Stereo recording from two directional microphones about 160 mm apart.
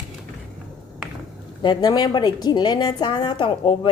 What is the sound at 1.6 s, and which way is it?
A woman's voice, 30° left (ahead or behind).